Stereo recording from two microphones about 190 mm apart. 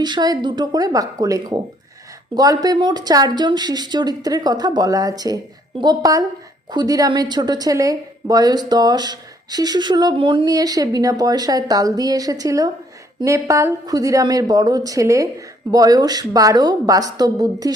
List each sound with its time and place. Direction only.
0.0 s a woman's voice: 20° right (ahead or behind)